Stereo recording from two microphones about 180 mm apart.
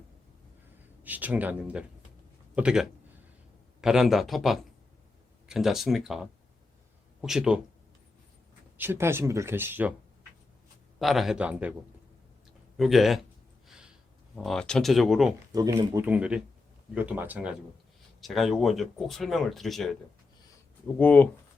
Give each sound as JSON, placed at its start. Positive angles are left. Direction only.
{"t": 1.0, "sound": "speech", "side_deg": -10}
{"t": 8.8, "sound": "speech", "side_deg": -15}
{"t": 11.0, "sound": "speech", "side_deg": 0}
{"t": 12.7, "sound": "speech", "side_deg": 0}
{"t": 13.7, "sound": "a sound", "side_deg": -5}
{"t": 14.3, "sound": "speech", "side_deg": 0}
{"t": 15.5, "sound": "speech", "side_deg": -20}
{"t": 16.0, "sound": "speech", "side_deg": -5}
{"t": 21.0, "sound": "speech", "side_deg": 10}